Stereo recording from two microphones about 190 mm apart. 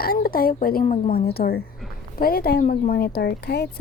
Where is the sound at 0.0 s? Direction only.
50° left (ahead or behind).